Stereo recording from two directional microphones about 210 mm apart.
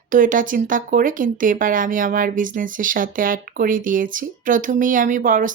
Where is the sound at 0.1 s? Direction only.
40° right (ahead or behind).